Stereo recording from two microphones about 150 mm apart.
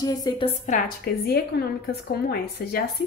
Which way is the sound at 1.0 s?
90° left.